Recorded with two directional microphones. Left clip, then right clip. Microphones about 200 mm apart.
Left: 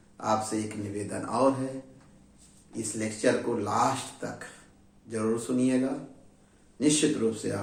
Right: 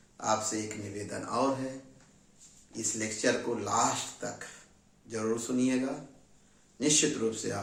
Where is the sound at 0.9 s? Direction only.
5° right (ahead or behind).